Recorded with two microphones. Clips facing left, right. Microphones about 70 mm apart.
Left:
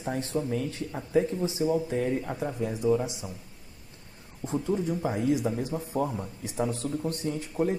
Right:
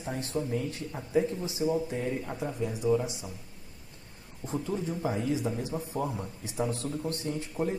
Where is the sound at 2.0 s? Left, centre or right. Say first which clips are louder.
Left 3 dB; left.